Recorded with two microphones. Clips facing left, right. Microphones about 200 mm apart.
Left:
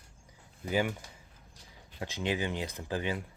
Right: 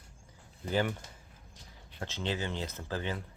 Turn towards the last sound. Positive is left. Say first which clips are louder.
# left 2 dB
turn(degrees=15)  # may be behind; listen again after turning